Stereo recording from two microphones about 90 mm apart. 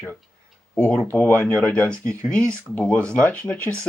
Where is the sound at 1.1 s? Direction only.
25° left (ahead or behind).